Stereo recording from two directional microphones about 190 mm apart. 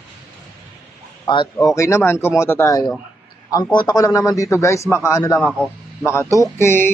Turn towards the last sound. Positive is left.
turn(degrees=15)  # may be behind; listen again after turning